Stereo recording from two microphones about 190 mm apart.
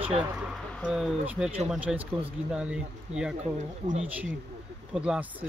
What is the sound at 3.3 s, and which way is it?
Speech, 40° right (ahead or behind).